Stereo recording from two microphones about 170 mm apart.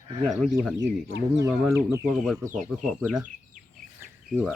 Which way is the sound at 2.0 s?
Centre (ahead or behind).